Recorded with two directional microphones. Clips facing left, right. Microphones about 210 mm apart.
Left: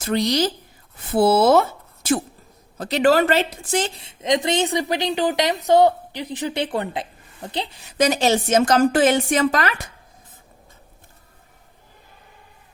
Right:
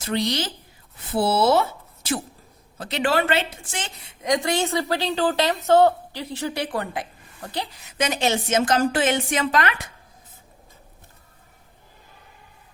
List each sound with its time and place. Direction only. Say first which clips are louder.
0.0 s speech: left 5 dB; 45° left (ahead or behind)
2.7 s a woman's voice: left 6 dB; 40° left (ahead or behind)